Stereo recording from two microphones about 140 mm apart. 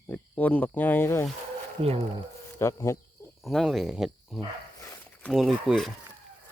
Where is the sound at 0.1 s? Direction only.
10° left (ahead or behind).